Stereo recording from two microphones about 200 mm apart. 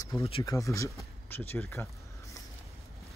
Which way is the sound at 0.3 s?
20° left (ahead or behind).